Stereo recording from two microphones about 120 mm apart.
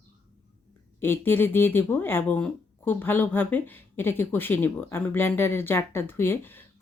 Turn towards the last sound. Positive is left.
turn(degrees=15)  # may be behind; listen again after turning